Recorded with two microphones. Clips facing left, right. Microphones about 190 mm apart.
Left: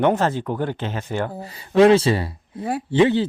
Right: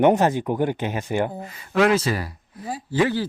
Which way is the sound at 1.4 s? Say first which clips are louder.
Left 5 dB; 35° left (ahead or behind).